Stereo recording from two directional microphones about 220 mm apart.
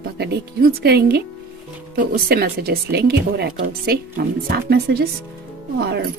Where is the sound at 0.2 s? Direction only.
45° right (ahead or behind).